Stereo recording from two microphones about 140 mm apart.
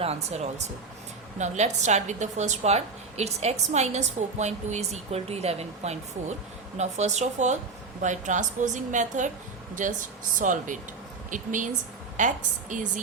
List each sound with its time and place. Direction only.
0.0 s a woman's voice: 50° right (ahead or behind); by 12.9 s 65° right (ahead or behind)